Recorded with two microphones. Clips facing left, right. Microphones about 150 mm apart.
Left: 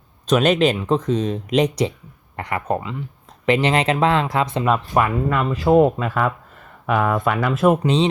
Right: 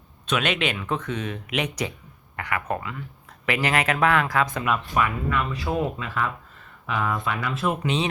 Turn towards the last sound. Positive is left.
turn(degrees=45)  # may be behind; listen again after turning